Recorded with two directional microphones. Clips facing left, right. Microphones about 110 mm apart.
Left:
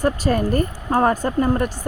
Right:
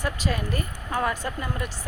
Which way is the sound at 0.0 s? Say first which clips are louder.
Left 9 dB; 45° left (ahead or behind).